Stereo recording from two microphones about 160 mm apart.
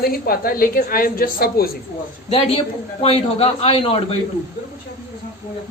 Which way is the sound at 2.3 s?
40° left (ahead or behind).